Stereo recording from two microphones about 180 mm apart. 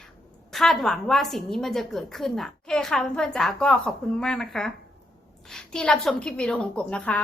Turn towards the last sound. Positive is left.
turn(degrees=5)  # may be behind; listen again after turning